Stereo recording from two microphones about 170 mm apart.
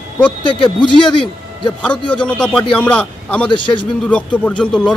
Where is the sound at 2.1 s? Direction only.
5° left (ahead or behind).